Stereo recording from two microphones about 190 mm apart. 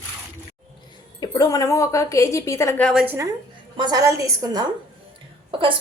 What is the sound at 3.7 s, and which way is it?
A woman's voice, 20° right (ahead or behind).